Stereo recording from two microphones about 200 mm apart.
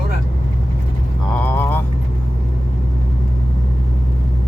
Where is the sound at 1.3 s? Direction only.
10° left (ahead or behind).